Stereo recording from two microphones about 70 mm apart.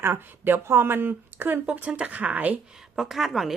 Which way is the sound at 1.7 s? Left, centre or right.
Centre.